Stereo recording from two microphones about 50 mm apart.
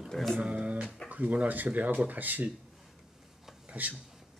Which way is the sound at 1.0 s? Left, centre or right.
Right.